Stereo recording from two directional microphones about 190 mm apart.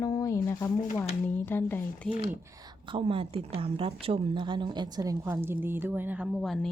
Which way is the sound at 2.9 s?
30° right (ahead or behind).